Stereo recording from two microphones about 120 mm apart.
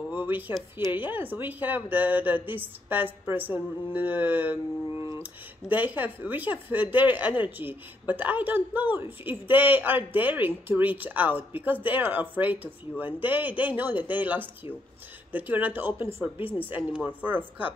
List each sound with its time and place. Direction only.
0.1 s speech: 15° right (ahead or behind)